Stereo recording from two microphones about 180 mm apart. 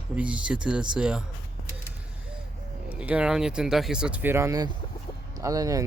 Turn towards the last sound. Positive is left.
turn(degrees=-20)  # may be behind; listen again after turning